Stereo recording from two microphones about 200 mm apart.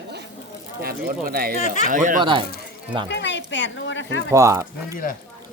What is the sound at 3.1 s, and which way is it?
Speech, 60° left (ahead or behind).